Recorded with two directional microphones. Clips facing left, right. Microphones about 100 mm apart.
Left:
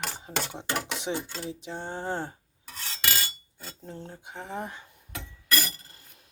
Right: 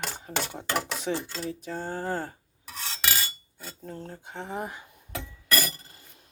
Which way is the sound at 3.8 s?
20° left (ahead or behind).